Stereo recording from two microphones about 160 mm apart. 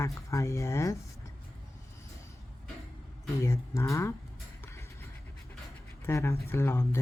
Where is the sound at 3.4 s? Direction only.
20° left (ahead or behind).